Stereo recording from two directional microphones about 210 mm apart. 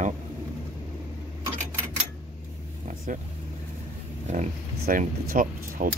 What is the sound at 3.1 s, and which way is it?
Speech, 40° right (ahead or behind).